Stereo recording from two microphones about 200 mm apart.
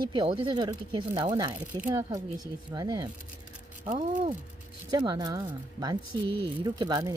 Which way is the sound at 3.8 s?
40° right (ahead or behind).